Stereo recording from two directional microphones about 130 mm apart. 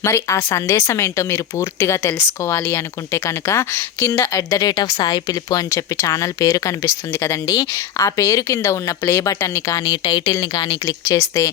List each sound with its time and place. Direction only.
0.0 s speech: 20° left (ahead or behind)